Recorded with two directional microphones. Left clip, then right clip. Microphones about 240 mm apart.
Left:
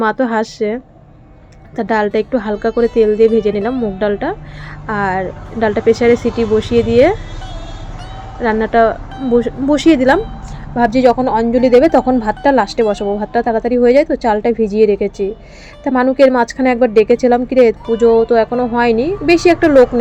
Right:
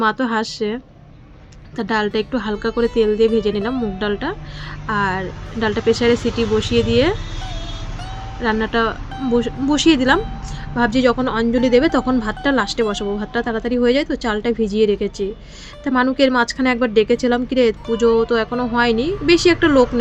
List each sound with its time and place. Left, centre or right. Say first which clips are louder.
0.0 s speech: left 4 dB; centre
8.4 s speech: left 7 dB; centre